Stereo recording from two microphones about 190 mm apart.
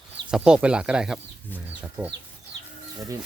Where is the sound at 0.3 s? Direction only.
5° right (ahead or behind).